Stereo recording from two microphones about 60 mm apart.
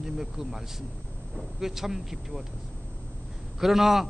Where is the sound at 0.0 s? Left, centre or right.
Centre.